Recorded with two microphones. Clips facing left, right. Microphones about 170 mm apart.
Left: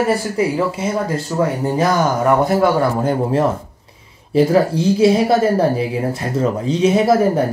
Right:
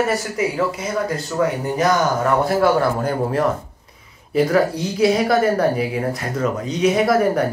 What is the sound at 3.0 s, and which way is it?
A woman's voice, 25° left (ahead or behind).